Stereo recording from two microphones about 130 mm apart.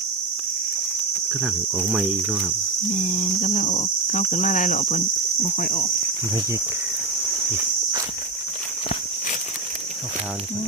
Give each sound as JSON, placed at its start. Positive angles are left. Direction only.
{"t": 1.3, "sound": "speech", "side_deg": -5}
{"t": 2.9, "sound": "speech", "side_deg": 75}